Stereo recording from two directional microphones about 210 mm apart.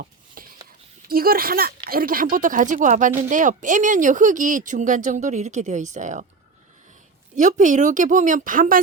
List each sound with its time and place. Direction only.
0.4 s a sound: 45° right (ahead or behind)
1.0 s speech: 45° right (ahead or behind)
7.3 s speech: 35° right (ahead or behind)